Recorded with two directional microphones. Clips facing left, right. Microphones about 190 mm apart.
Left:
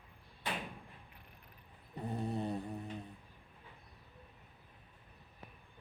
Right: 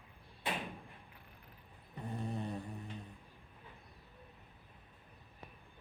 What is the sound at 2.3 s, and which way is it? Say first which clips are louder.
Music: left 4 dB; 35° left (ahead or behind).